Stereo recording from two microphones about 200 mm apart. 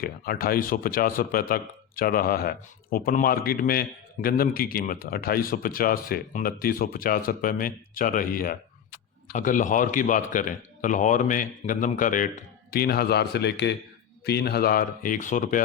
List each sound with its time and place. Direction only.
0.0 s a man's voice: 45° left (ahead or behind)